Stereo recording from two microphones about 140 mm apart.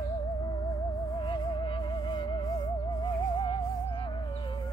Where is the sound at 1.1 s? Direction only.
35° left (ahead or behind).